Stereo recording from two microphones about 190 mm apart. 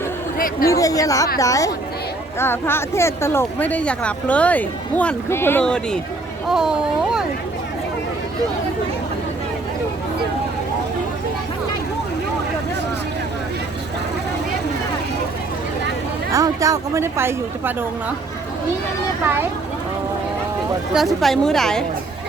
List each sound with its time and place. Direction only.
0.6 s speech: 15° left (ahead or behind); by 7.3 s 5° right (ahead or behind)
16.3 s a woman's voice: 15° right (ahead or behind)
19.2 s a woman's voice: 10° right (ahead or behind)
20.9 s a woman's voice: centre (ahead or behind)